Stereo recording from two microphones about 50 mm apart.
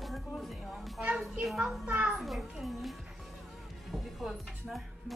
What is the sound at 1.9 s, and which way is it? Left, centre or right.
Speech, right.